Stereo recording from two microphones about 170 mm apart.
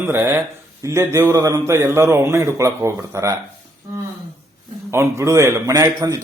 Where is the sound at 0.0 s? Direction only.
15° right (ahead or behind).